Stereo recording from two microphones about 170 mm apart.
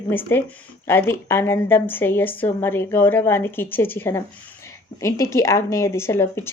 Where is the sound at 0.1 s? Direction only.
10° left (ahead or behind).